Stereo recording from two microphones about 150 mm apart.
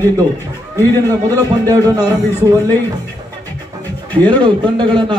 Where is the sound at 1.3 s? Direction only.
25° right (ahead or behind).